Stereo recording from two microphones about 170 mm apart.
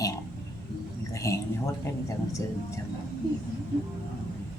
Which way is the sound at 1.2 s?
15° left (ahead or behind).